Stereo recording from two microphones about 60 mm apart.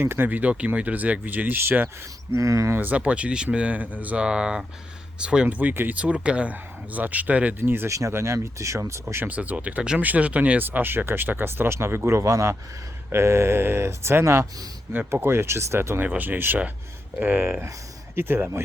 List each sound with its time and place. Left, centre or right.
0.0 s speech: right
0.3 s speech: right
2.3 s speech: right
2.7 s speech: right
4.2 s speech: centre
5.5 s speech: right
6.0 s speech: centre
7.9 s speech: right
9.2 s speech: right
10.7 s speech: right
16.0 s speech: right